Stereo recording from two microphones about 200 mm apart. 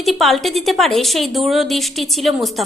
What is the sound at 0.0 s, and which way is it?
A woman's voice, centre (ahead or behind).